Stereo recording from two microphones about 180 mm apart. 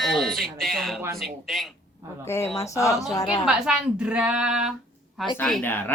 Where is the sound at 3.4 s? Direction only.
5° right (ahead or behind).